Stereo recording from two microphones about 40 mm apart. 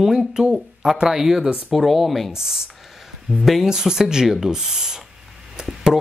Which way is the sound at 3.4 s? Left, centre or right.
Centre.